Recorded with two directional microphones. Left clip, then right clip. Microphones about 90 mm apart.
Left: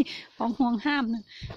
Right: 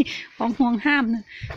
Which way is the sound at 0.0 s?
20° left (ahead or behind).